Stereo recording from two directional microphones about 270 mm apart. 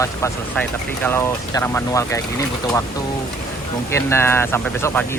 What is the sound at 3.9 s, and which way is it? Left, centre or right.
Speech, centre.